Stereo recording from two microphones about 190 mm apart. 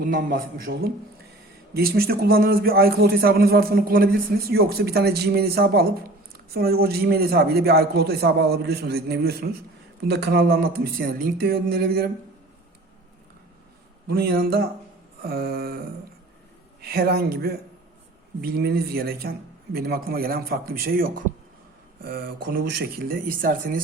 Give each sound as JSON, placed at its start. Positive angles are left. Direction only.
{"t": 0.0, "sound": "a man's voice", "side_deg": -45}
{"t": 14.1, "sound": "a man's voice", "side_deg": -55}
{"t": 16.8, "sound": "a man's voice", "side_deg": -55}